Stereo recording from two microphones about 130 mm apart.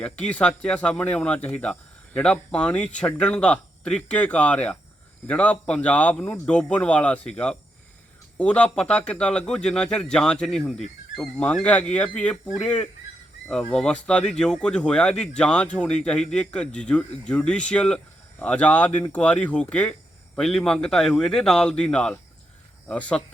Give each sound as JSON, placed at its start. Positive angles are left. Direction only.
{"t": 0.0, "sound": "a man's voice", "side_deg": 10}